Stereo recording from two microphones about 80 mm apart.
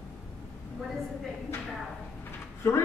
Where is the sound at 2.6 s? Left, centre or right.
Left.